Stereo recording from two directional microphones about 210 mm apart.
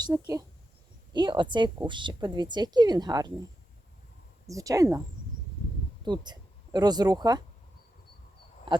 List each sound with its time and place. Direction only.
0.0 s a woman's voice: 15° right (ahead or behind)
6.1 s speech: 20° right (ahead or behind)